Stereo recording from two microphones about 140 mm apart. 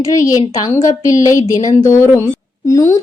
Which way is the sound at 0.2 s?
20° left (ahead or behind).